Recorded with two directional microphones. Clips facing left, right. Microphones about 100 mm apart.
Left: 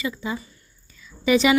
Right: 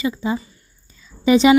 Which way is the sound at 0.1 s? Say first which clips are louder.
Right 6 dB; 30° right (ahead or behind).